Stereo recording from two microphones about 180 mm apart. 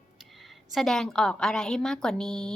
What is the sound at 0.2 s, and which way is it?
A woman's voice, centre (ahead or behind).